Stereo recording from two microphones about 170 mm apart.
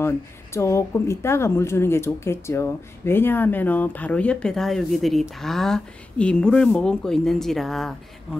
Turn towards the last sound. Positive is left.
turn(degrees=0)  # may be behind; listen again after turning